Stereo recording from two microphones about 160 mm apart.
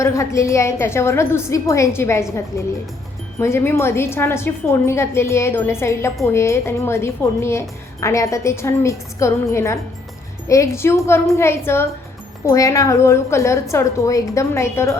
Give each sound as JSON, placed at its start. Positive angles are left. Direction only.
{"t": 0.0, "sound": "a woman's voice", "side_deg": 20}
{"t": 3.3, "sound": "a woman's voice", "side_deg": 15}